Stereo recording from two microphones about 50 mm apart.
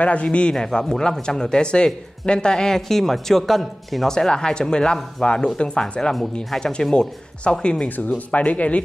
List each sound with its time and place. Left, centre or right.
0.0 s speech: left
8.3 s speech: left